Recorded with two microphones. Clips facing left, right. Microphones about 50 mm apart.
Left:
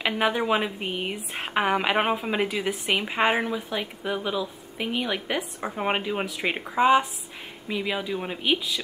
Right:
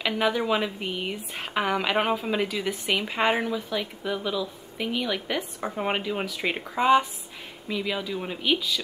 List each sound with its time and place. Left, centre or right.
0.0 s a woman's voice: centre